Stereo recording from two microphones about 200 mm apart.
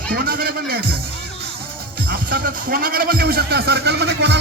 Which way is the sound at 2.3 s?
45° right (ahead or behind).